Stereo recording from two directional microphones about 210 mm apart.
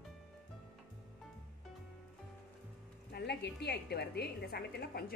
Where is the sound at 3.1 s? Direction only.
50° left (ahead or behind).